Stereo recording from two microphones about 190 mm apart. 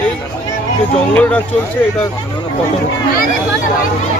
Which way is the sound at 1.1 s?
5° left (ahead or behind).